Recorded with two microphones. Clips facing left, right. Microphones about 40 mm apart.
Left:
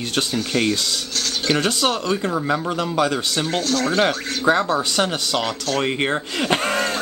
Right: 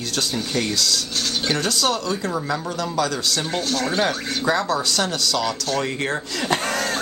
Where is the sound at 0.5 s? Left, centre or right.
Left.